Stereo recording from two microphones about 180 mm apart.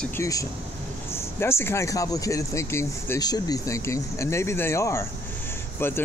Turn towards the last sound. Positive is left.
turn(degrees=10)  # may be behind; listen again after turning